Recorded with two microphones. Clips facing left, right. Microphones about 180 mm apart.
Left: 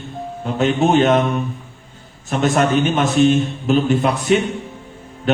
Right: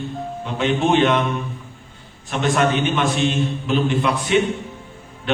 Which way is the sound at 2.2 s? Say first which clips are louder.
Left 2 dB; 45° left (ahead or behind).